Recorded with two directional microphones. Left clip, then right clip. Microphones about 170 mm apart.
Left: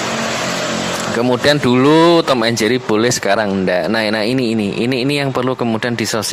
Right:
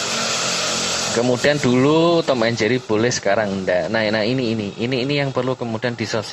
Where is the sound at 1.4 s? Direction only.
40° left (ahead or behind).